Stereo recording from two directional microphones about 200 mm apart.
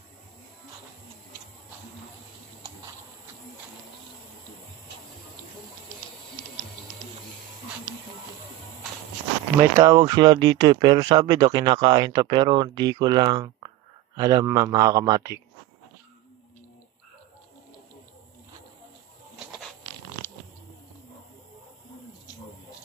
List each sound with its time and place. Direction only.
9.6 s speech: 15° right (ahead or behind)